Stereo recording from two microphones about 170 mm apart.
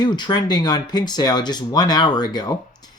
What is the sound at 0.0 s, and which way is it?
Speech, 25° left (ahead or behind).